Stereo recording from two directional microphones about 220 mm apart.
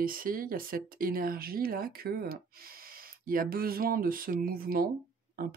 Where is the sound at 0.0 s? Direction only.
40° right (ahead or behind).